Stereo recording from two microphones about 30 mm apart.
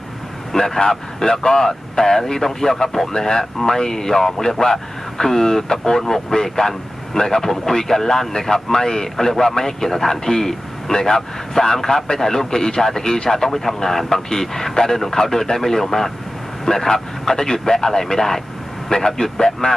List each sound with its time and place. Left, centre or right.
0.5 s a man's voice: centre
0.8 s a man's voice: left